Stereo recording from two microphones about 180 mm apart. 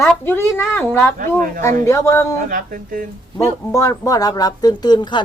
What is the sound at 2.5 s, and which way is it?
Speech, 50° right (ahead or behind).